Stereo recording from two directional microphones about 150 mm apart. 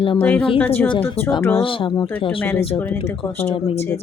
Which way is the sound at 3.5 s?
40° left (ahead or behind).